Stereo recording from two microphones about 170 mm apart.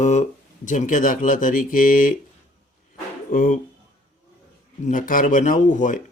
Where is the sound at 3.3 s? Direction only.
55° left (ahead or behind).